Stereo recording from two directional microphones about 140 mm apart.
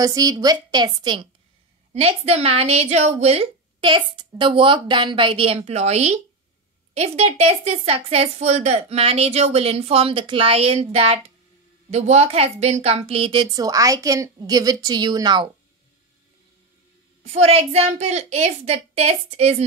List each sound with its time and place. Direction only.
0.0 s a woman's voice: 25° right (ahead or behind)
2.0 s a woman's voice: 50° right (ahead or behind); by 15.5 s 30° right (ahead or behind)
17.2 s a woman's voice: 50° right (ahead or behind)